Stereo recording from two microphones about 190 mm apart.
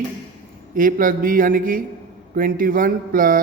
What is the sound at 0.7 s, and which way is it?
Speech, 45° right (ahead or behind).